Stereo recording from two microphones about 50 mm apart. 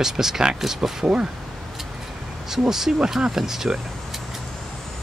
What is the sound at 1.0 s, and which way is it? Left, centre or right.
Speech, centre.